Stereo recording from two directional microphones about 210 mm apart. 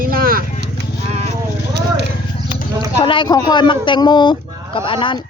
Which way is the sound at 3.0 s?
25° left (ahead or behind).